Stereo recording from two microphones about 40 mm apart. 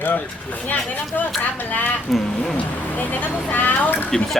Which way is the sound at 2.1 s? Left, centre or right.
Centre.